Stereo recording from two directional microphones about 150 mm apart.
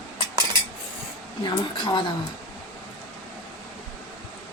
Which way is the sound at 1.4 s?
30° left (ahead or behind).